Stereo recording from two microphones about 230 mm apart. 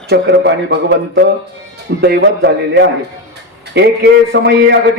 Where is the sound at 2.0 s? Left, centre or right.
Right.